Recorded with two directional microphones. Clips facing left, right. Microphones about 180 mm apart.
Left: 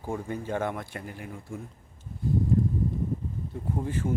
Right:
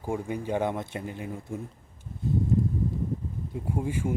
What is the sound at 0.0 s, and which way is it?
Speech, 15° right (ahead or behind).